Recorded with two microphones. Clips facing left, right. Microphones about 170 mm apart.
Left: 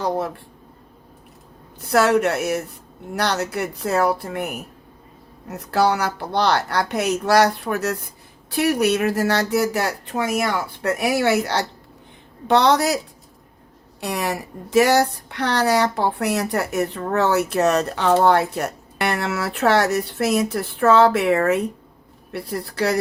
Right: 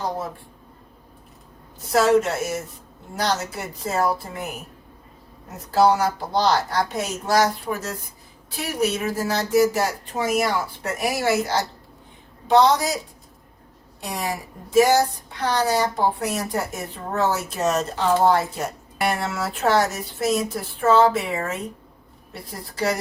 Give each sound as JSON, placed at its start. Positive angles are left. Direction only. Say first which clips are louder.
{"t": 1.8, "sound": "speech", "louder": "left 1 dB", "side_deg": 65}
{"t": 14.0, "sound": "speech", "louder": "left 4 dB", "side_deg": 70}